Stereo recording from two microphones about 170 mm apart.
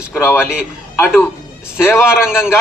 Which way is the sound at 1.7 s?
15° left (ahead or behind).